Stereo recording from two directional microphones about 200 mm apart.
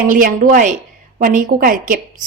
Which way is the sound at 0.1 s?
45° right (ahead or behind).